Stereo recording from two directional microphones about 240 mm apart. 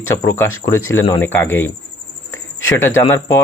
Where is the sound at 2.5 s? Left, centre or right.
Left.